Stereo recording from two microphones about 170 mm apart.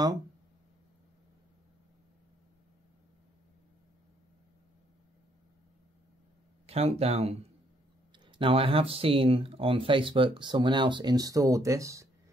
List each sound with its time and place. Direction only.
6.6 s speech: 35° right (ahead or behind); by 12.1 s 20° right (ahead or behind)